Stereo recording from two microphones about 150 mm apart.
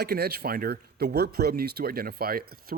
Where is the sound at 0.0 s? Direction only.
90° right.